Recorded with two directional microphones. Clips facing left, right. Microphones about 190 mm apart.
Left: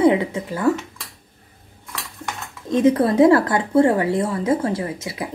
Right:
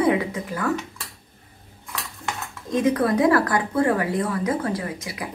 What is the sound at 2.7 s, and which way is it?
A woman's voice, 25° left (ahead or behind).